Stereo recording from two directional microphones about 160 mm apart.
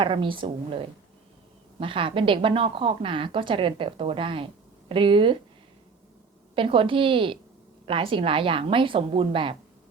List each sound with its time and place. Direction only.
0.0 s a woman's voice: 30° right (ahead or behind)
1.8 s a woman's voice: 35° right (ahead or behind)
6.6 s a woman's voice: 35° right (ahead or behind)